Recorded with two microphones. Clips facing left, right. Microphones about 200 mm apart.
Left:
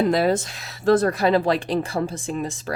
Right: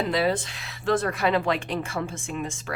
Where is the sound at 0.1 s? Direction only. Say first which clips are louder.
Left 4 dB; 45° left (ahead or behind).